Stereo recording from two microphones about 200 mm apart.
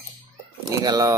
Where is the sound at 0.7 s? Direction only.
15° right (ahead or behind).